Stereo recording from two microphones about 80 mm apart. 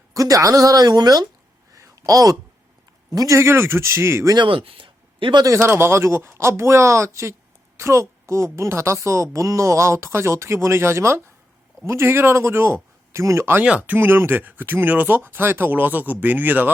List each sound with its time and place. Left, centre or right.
0.1 s speech: right
1.7 s a sound: right
3.1 s a man's voice: right
3.3 s speech: right
4.4 s speech: right
5.4 s speech: right
5.6 s speech: right
13.7 s speech: centre